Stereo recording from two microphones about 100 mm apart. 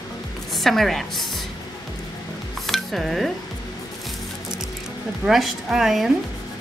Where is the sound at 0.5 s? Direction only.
Centre (ahead or behind).